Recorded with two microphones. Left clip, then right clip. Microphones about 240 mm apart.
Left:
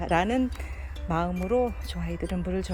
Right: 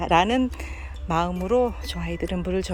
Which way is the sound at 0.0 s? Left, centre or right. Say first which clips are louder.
Right 5 dB; centre.